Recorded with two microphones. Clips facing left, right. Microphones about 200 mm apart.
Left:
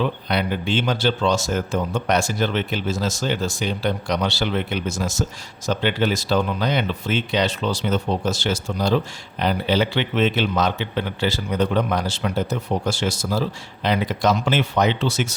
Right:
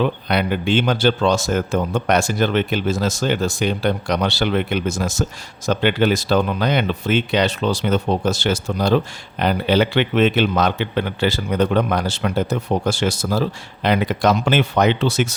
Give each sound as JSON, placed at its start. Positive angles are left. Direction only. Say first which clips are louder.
{"t": 0.0, "sound": "a man's voice", "louder": "right 3 dB", "side_deg": -55}